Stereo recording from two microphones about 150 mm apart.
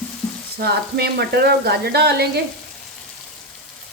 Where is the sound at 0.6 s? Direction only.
90° right.